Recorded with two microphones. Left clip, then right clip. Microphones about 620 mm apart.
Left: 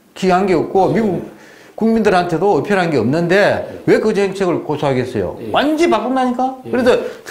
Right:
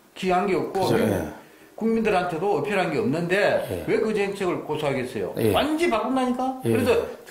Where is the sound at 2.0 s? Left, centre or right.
Left.